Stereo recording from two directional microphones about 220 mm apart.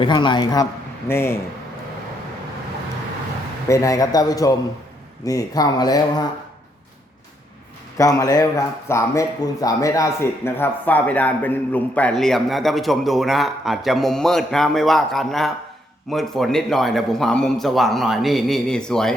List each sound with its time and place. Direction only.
0.0 s a man's voice: 20° left (ahead or behind)
3.7 s speech: 15° left (ahead or behind)
7.9 s a man's voice: 15° left (ahead or behind)